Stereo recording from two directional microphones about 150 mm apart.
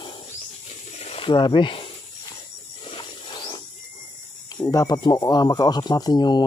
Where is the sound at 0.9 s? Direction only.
40° left (ahead or behind).